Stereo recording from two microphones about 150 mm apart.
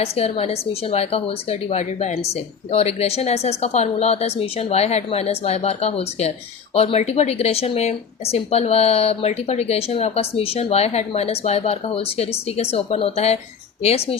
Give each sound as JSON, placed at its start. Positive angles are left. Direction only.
{"t": 0.0, "sound": "speech", "side_deg": 45}